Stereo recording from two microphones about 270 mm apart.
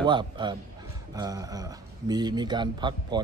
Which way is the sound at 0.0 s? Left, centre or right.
Centre.